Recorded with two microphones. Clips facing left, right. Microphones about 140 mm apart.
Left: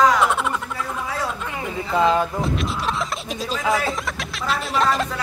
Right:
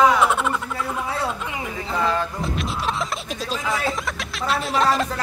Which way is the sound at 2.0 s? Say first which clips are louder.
Left 5 dB; 20° left (ahead or behind).